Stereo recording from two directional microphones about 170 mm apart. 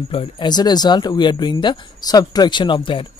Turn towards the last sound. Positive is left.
turn(degrees=30)  # may be behind; listen again after turning